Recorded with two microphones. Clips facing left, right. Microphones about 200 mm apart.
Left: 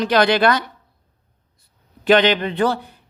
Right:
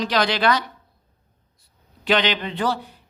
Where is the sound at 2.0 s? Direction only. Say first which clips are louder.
Left 6 dB; 50° left (ahead or behind).